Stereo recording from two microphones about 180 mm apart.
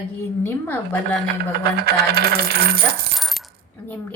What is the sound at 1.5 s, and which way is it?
Coin, 60° right (ahead or behind).